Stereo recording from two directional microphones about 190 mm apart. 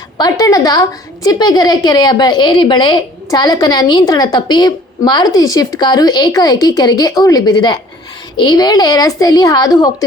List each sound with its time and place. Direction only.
0.2 s a woman's voice: 20° left (ahead or behind)